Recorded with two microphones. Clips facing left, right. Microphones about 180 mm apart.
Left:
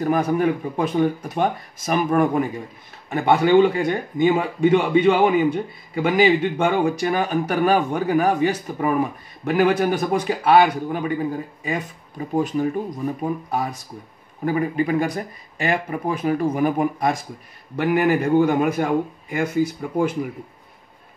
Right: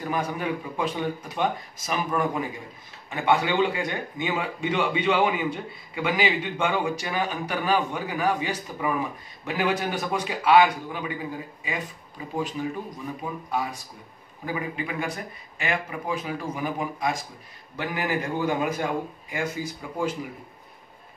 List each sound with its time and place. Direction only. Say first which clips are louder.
0.0 s a man's voice: left 9 dB; 50° left (ahead or behind)